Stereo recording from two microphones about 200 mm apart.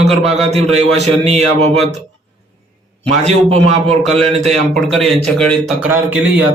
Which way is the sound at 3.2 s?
30° right (ahead or behind).